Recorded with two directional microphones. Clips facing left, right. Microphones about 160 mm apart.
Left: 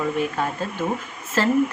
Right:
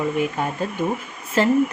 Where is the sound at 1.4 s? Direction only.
15° right (ahead or behind).